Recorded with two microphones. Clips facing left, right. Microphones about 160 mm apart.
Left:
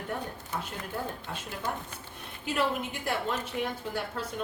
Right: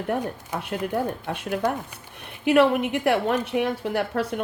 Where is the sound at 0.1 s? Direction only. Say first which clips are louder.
Right 8 dB; 65° right (ahead or behind).